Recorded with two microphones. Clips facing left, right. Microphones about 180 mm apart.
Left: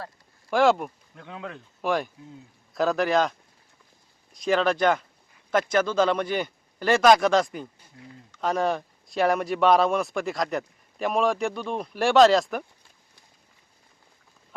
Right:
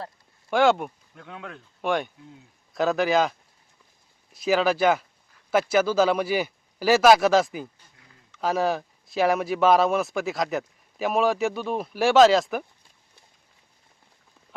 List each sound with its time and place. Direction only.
0.5 s speech: centre (ahead or behind)
4.4 s speech: 5° right (ahead or behind)